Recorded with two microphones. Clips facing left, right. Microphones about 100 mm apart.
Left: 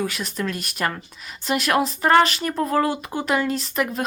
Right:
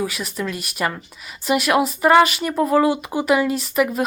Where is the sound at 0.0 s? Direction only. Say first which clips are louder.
Right 1 dB; 5° right (ahead or behind).